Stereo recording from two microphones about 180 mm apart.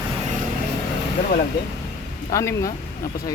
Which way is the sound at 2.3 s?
15° left (ahead or behind).